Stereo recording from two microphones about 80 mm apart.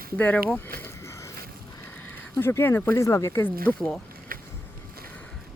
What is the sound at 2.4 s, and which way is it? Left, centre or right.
Speech, left.